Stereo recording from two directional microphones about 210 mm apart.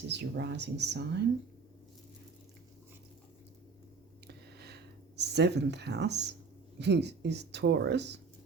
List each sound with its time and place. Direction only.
0.1 s speech: 55° right (ahead or behind)
4.3 s a sound: 50° right (ahead or behind)
6.7 s speech: 55° right (ahead or behind)